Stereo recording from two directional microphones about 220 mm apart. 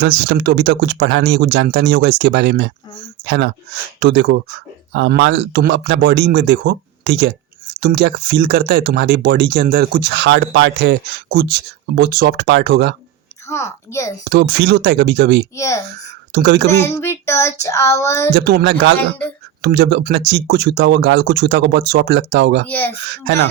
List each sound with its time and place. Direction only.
0.0 s speech: 55° right (ahead or behind)
13.5 s child singing: 10° left (ahead or behind)
14.3 s speech: 50° right (ahead or behind)
15.5 s child singing: 15° left (ahead or behind)
16.3 s speech: 50° right (ahead or behind)
16.6 s child singing: 10° left (ahead or behind)
18.3 s speech: 50° right (ahead or behind)
22.6 s child singing: 5° left (ahead or behind)